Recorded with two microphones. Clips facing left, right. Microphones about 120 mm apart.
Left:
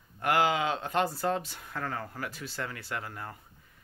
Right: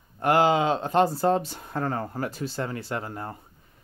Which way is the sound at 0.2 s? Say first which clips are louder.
Right 6 dB; 30° right (ahead or behind).